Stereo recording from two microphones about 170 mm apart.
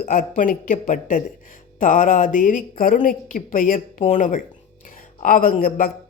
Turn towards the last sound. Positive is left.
turn(degrees=55)  # may be behind; listen again after turning